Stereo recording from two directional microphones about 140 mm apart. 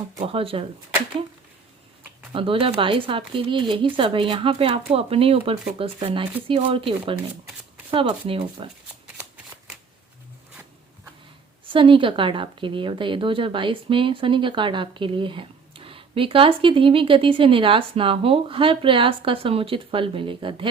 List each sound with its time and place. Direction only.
0.2 s speech: 40° right (ahead or behind)
2.3 s speech: 40° right (ahead or behind)
11.6 s speech: 35° right (ahead or behind)